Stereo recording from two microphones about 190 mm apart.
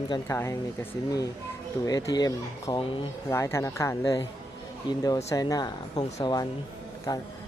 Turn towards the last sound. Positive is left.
turn(degrees=20)  # may be behind; listen again after turning